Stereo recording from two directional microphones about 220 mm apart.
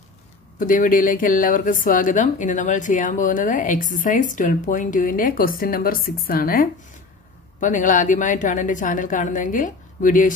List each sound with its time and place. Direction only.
0.6 s speech: 40° left (ahead or behind)